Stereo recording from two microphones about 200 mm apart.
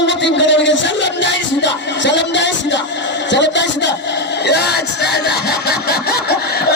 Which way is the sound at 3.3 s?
60° left (ahead or behind).